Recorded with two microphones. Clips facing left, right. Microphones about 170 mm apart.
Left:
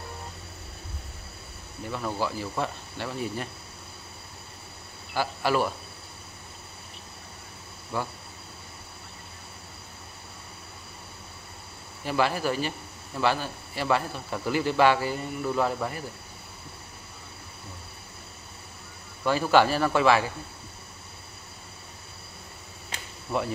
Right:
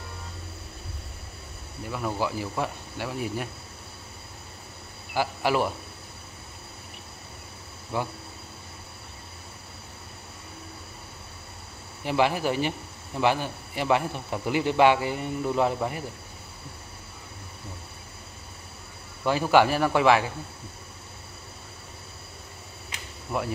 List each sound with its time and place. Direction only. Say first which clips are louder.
1.9 s speech: right 1 dB; 5° right (ahead or behind)
5.1 s speech: right 1 dB; 15° right (ahead or behind)
7.9 s speech: right 2 dB; 15° right (ahead or behind)
12.0 s speech: right 2 dB; 15° right (ahead or behind)
19.2 s speech: right 1 dB; 15° right (ahead or behind)